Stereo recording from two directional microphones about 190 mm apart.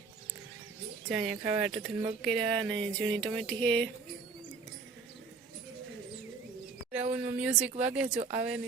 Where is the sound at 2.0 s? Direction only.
10° right (ahead or behind).